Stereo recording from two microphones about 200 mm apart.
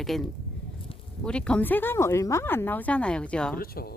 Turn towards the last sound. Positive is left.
turn(degrees=50)  # may be behind; listen again after turning